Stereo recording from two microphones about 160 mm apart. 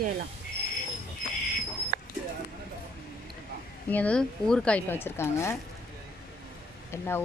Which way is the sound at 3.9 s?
10° left (ahead or behind).